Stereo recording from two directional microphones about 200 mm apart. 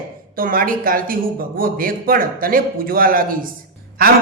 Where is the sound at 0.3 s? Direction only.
45° right (ahead or behind).